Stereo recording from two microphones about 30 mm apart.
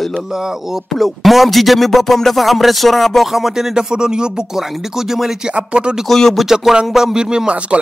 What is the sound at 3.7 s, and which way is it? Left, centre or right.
Speech, right.